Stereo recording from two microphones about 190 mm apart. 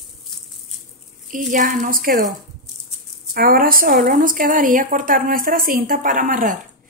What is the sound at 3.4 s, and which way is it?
Speech, 50° right (ahead or behind).